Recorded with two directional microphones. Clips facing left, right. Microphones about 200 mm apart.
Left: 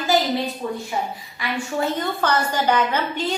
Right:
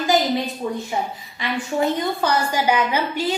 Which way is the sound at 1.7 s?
10° right (ahead or behind).